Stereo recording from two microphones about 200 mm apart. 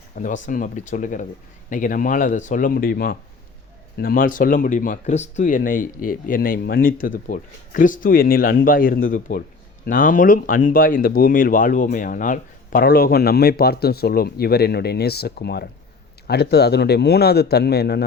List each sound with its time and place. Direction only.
0.2 s speech: 40° left (ahead or behind)